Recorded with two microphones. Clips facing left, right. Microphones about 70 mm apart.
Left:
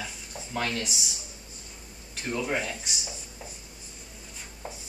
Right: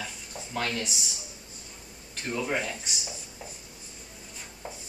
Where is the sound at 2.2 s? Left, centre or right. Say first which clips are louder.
Even; centre.